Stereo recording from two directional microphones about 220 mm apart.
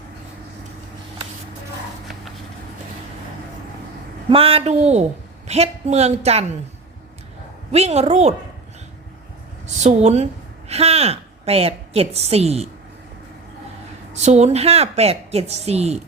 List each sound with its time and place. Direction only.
4.3 s a woman's voice: 25° right (ahead or behind)
7.7 s a woman's voice: 30° right (ahead or behind)
9.6 s a woman's voice: 30° right (ahead or behind)
14.1 s a woman's voice: 30° right (ahead or behind)